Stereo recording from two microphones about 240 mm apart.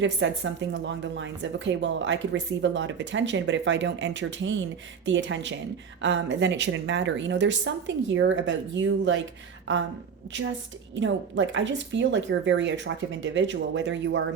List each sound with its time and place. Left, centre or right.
0.0 s speech: right
10.9 s speech: right